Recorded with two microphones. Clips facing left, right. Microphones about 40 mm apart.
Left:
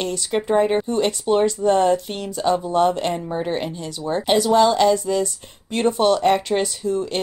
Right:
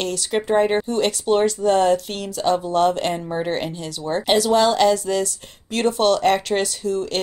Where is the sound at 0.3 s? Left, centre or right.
Centre.